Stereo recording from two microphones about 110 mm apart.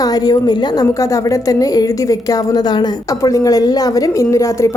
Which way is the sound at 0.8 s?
30° left (ahead or behind).